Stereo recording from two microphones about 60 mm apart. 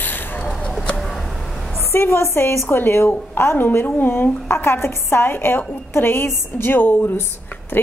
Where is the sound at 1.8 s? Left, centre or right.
Left.